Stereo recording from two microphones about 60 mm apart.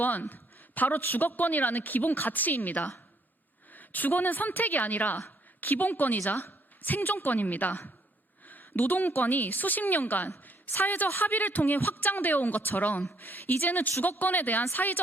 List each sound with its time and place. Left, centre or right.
0.0 s a woman's voice: left